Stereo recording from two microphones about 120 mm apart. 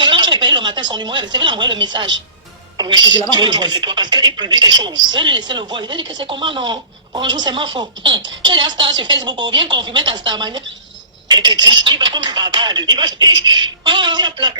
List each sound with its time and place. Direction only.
0.0 s a woman's voice: 40° right (ahead or behind)